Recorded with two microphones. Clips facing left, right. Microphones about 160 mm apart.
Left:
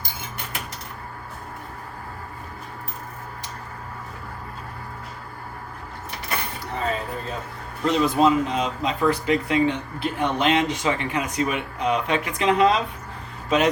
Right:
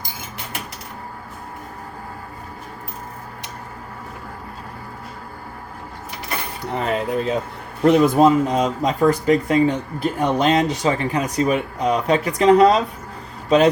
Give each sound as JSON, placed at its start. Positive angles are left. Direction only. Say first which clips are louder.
{"t": 6.7, "sound": "speech", "louder": "right 6 dB", "side_deg": -70}
{"t": 7.9, "sound": "speech", "louder": "right 6 dB", "side_deg": -50}